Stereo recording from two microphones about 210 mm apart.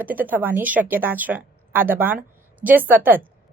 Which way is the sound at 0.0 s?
10° right (ahead or behind).